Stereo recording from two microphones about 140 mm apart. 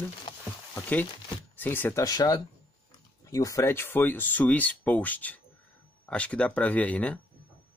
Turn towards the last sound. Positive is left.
turn(degrees=10)  # may be behind; listen again after turning